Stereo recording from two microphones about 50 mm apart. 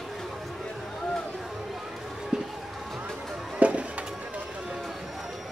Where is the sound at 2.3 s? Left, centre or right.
Centre.